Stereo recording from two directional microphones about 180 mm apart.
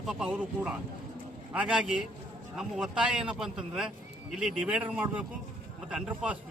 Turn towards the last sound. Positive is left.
turn(degrees=-5)  # may be behind; listen again after turning